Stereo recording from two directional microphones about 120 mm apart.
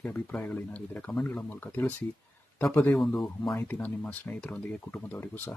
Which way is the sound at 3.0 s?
Centre (ahead or behind).